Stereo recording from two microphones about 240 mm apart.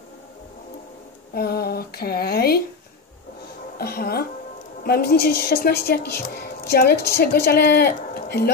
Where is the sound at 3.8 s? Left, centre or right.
Left.